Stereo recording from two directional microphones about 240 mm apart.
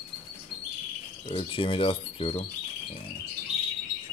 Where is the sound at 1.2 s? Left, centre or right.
Left.